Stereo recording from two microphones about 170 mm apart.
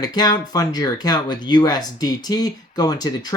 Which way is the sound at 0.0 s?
25° left (ahead or behind).